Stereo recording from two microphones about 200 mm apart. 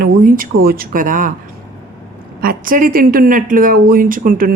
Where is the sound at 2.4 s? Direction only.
45° right (ahead or behind).